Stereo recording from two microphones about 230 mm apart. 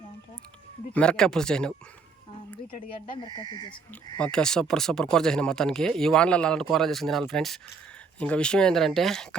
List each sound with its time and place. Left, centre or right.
0.9 s speech: centre
3.1 s speech: left
4.2 s speech: centre